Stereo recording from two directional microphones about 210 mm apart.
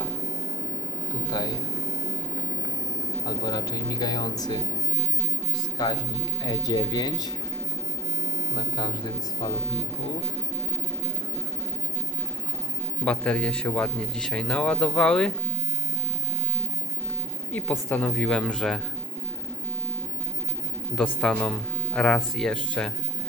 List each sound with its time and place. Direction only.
1.3 s speech: 20° left (ahead or behind)
3.2 s speech: 20° left (ahead or behind)
5.7 s speech: 20° left (ahead or behind)
8.5 s speech: 20° left (ahead or behind)
13.1 s speech: 5° left (ahead or behind)
17.5 s speech: 5° left (ahead or behind)
21.2 s speech: 5° left (ahead or behind)